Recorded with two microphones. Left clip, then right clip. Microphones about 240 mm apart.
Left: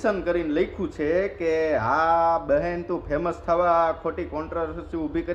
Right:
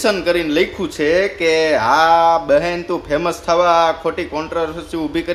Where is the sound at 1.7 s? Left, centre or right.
Centre.